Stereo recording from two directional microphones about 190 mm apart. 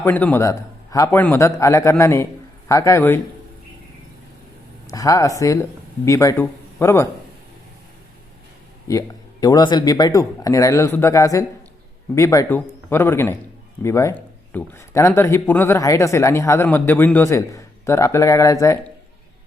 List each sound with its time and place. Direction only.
0.0 s speech: 10° left (ahead or behind)
4.9 s speech: 15° left (ahead or behind)
8.9 s speech: 20° left (ahead or behind)